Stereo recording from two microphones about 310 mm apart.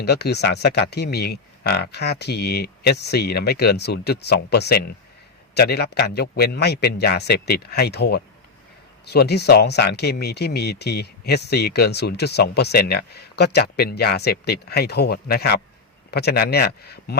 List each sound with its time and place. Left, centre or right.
0.0 s speech: left